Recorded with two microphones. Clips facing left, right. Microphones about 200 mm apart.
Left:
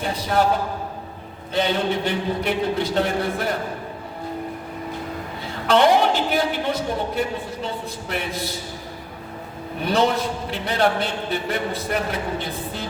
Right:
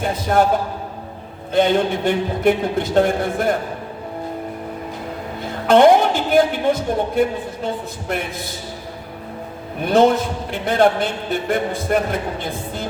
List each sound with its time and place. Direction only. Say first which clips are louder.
0.0 s a man's voice: right 4 dB; 50° right (ahead or behind)
1.5 s a man's voice: right 5 dB; 50° right (ahead or behind)
5.6 s a man's voice: right 5 dB; 50° right (ahead or behind)
9.8 s a man's voice: right 6 dB; 50° right (ahead or behind)